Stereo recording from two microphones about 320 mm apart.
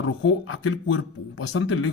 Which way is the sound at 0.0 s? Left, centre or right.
Left.